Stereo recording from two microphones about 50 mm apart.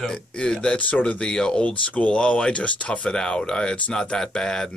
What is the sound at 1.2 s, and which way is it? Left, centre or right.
Speech, centre.